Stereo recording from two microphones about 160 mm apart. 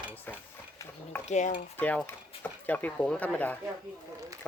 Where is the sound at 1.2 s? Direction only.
50° left (ahead or behind).